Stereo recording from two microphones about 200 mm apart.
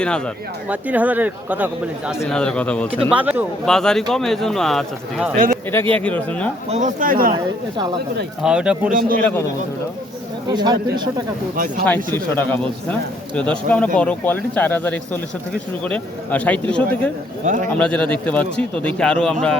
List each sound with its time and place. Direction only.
0.7 s speech: 5° right (ahead or behind)
2.3 s a man's voice: 5° left (ahead or behind)
3.1 s speech: 10° right (ahead or behind)
3.7 s a man's voice: 5° left (ahead or behind)
6.7 s speech: 35° right (ahead or behind)
8.4 s a man's voice: 5° right (ahead or behind)
8.9 s a man's voice: 45° right (ahead or behind)
10.5 s speech: 20° right (ahead or behind)
11.9 s a man's voice: 10° left (ahead or behind)
17.4 s speech: 40° right (ahead or behind)
17.7 s a man's voice: 5° left (ahead or behind)